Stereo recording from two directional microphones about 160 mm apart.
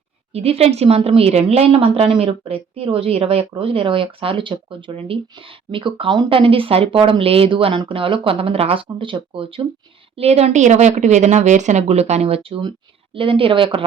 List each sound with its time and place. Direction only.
0.3 s a woman's voice: 40° right (ahead or behind)